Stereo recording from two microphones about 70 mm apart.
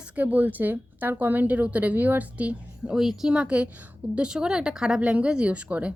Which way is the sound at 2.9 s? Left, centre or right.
Centre.